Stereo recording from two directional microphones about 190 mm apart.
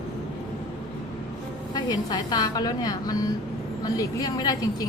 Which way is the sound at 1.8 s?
20° left (ahead or behind).